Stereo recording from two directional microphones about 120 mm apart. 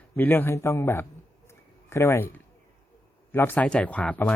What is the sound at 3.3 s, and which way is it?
A man's voice, 15° left (ahead or behind).